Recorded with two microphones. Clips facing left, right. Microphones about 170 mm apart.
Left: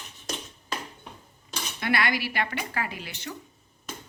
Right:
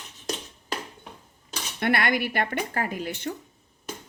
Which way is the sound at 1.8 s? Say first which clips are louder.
Right 3 dB; 55° right (ahead or behind).